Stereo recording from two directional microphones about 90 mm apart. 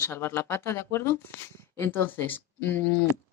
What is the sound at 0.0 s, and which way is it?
Speech, 30° left (ahead or behind).